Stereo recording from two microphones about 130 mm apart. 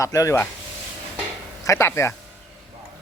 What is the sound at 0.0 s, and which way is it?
Speech, 25° left (ahead or behind).